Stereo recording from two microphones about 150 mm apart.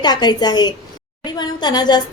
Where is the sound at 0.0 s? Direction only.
30° left (ahead or behind).